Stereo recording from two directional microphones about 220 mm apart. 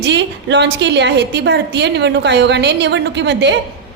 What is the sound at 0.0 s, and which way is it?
A woman's voice, 50° right (ahead or behind).